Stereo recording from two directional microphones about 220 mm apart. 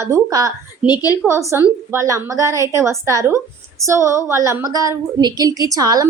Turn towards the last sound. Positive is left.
turn(degrees=-15)  # may be behind; listen again after turning